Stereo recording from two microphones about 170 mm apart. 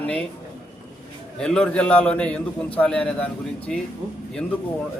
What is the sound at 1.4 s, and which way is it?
A man's voice, 5° left (ahead or behind).